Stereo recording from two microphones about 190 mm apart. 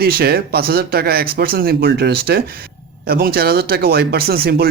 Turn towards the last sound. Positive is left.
turn(degrees=-55)  # may be behind; listen again after turning